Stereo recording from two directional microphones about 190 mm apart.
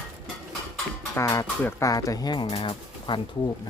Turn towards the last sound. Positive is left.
turn(degrees=25)  # may be behind; listen again after turning